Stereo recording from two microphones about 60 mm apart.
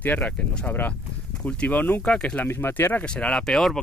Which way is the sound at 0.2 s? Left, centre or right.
Centre.